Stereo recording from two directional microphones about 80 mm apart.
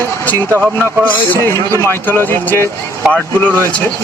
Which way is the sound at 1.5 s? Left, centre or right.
Left.